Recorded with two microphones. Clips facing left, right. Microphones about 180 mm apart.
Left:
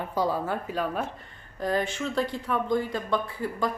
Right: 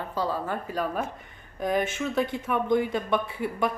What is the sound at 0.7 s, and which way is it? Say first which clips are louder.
Speech: even; 10° right (ahead or behind).